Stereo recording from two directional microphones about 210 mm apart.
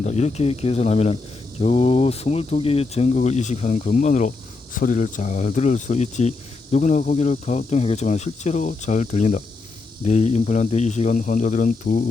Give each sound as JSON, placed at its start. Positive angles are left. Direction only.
{"t": 0.0, "sound": "speech", "side_deg": 30}